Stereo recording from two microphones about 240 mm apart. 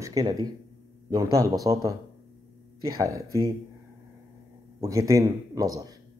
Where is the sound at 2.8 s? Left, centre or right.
Centre.